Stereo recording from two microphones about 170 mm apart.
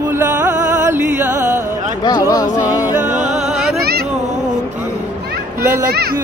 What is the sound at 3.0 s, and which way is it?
Music, 45° right (ahead or behind).